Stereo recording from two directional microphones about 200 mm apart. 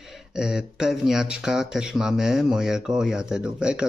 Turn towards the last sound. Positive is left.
turn(degrees=-5)  # may be behind; listen again after turning